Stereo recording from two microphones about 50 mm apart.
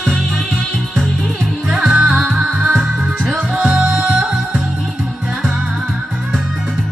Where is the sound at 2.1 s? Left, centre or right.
Centre.